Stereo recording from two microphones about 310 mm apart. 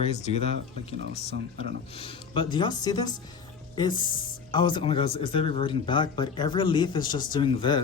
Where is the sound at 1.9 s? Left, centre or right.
Centre.